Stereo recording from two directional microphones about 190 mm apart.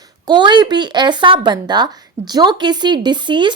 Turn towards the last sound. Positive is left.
turn(degrees=-25)  # may be behind; listen again after turning